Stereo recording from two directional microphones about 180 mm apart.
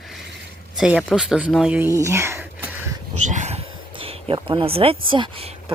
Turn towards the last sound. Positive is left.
turn(degrees=-30)  # may be behind; listen again after turning